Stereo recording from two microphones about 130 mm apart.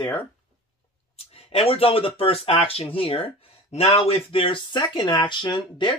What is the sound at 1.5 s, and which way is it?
Speech, 45° left (ahead or behind).